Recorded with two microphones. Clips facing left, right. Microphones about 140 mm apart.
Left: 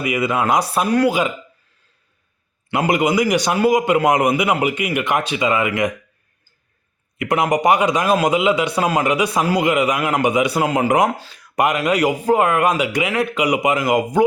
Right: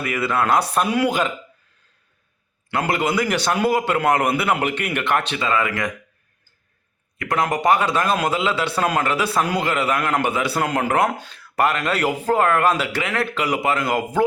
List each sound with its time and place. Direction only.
0.0 s speech: 15° left (ahead or behind)
0.9 s speech: centre (ahead or behind)
2.7 s speech: 15° left (ahead or behind)
7.2 s speech: 20° left (ahead or behind)